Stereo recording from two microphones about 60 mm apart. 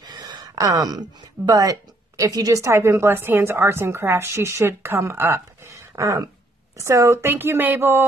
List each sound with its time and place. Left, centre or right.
0.4 s a woman's voice: right
5.7 s speech: right
6.8 s a woman's voice: right